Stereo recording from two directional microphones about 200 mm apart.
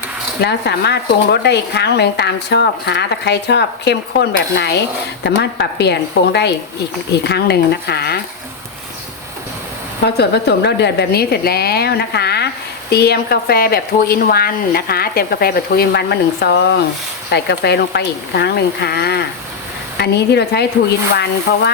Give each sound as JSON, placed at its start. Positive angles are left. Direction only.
{"t": 0.4, "sound": "speech", "side_deg": 55}
{"t": 10.2, "sound": "speech", "side_deg": 55}